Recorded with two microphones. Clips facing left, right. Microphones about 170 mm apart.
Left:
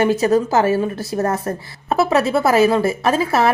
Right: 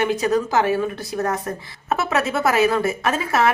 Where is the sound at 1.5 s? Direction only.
40° left (ahead or behind).